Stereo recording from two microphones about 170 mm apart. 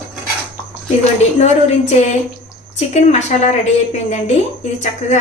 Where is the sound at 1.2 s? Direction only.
40° left (ahead or behind).